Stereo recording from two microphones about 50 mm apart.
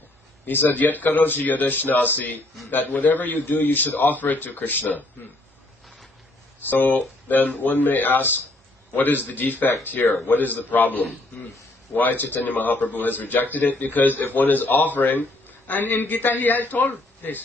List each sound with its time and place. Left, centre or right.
0.4 s a man's voice: left
6.7 s a man's voice: left
9.3 s a man's voice: left